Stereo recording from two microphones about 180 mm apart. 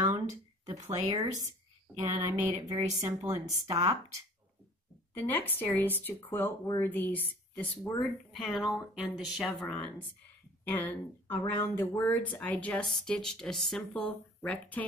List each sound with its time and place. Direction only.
1.0 s a woman's voice: 30° right (ahead or behind)
2.0 s a sound: 15° right (ahead or behind)
3.0 s a woman's voice: 15° right (ahead or behind)
5.1 s speech: 10° left (ahead or behind)